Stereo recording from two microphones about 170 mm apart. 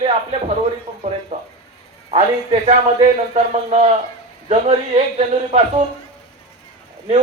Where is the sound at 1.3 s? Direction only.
55° right (ahead or behind).